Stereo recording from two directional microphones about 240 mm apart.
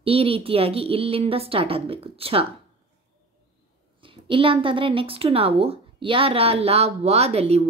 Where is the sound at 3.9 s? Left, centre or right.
Right.